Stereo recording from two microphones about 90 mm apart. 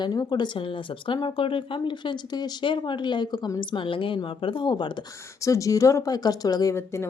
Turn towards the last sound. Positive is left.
turn(degrees=30)  # may be behind; listen again after turning